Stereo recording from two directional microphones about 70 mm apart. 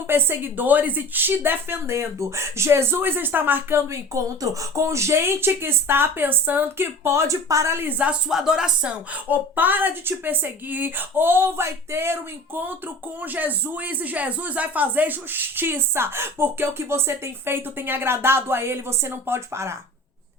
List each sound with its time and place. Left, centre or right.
0.1 s speech: right
4.1 s speech: right
7.8 s a woman's voice: right
8.3 s speech: centre
9.3 s a woman's voice: right